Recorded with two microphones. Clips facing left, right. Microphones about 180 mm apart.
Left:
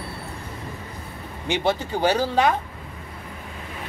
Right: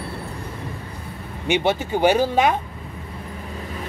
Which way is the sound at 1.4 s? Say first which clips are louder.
Right 3 dB; 20° right (ahead or behind).